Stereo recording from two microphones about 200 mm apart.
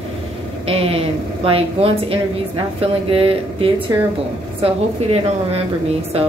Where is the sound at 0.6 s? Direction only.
30° right (ahead or behind).